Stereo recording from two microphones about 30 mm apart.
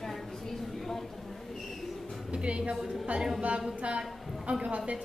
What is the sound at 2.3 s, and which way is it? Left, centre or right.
Speech, right.